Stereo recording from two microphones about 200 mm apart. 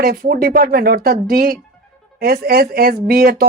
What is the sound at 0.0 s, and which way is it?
Speech, 45° right (ahead or behind).